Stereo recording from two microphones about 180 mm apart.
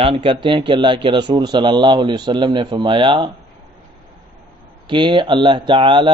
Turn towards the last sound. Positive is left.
turn(degrees=-25)  # may be behind; listen again after turning